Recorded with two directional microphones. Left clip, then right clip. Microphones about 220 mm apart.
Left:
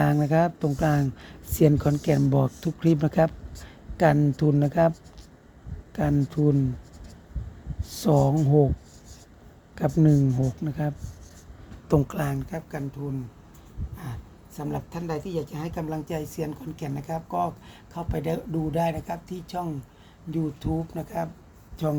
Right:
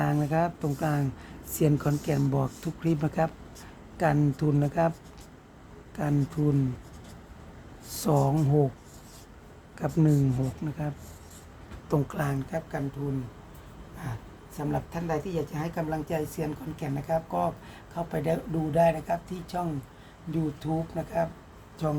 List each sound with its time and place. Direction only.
0.0 s speech: 30° left (ahead or behind)
7.9 s speech: 20° left (ahead or behind)
9.7 s speech: 25° left (ahead or behind)
10.2 s speech: 5° left (ahead or behind)
11.9 s speech: 30° left (ahead or behind)
14.5 s speech: 30° left (ahead or behind)